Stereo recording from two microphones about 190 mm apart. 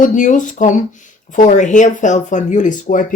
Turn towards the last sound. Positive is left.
turn(degrees=40)  # may be behind; listen again after turning